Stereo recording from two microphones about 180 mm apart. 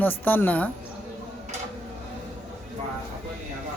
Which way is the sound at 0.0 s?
10° left (ahead or behind).